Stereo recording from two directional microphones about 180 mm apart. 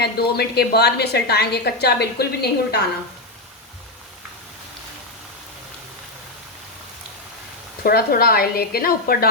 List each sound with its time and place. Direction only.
0.0 s a woman's voice: 65° left (ahead or behind)
7.9 s a woman's voice: 55° left (ahead or behind)